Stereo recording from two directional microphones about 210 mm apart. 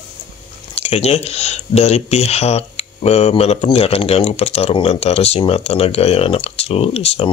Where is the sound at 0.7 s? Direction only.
30° left (ahead or behind).